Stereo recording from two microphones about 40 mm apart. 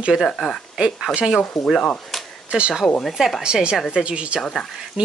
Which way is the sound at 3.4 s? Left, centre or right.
Right.